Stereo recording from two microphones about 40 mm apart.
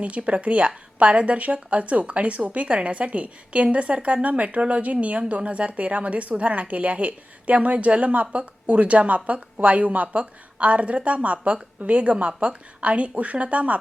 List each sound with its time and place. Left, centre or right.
0.0 s a woman's voice: right